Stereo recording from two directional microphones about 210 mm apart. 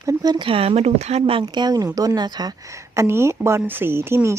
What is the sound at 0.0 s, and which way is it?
Speech, 15° right (ahead or behind).